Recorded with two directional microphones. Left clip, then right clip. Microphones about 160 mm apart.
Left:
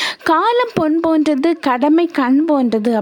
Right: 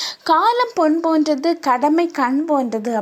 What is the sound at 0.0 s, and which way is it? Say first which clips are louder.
A woman's voice: left 1 dB; 50° left (ahead or behind).